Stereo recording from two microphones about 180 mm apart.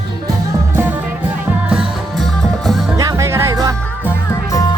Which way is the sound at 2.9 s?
20° right (ahead or behind).